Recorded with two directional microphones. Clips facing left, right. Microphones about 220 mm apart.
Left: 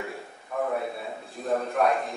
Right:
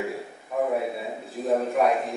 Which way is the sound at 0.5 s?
10° right (ahead or behind).